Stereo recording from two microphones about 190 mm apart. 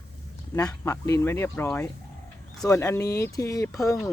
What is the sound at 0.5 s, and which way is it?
Speech, 15° left (ahead or behind).